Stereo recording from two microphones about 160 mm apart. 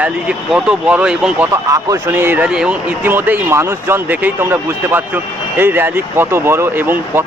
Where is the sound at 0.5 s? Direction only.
5° right (ahead or behind).